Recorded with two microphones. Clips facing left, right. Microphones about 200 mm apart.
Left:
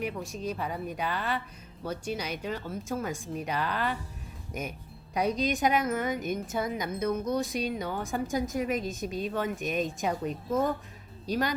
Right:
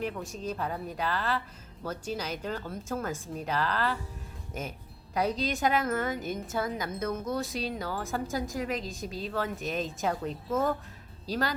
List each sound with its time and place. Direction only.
0.4 s speech: 10° left (ahead or behind)
5.1 s a woman's voice: 15° left (ahead or behind)